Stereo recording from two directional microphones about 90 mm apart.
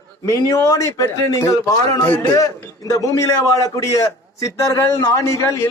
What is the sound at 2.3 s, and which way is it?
A man's voice, 40° left (ahead or behind).